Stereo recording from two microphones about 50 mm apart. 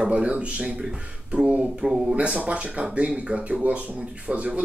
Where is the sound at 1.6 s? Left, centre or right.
Centre.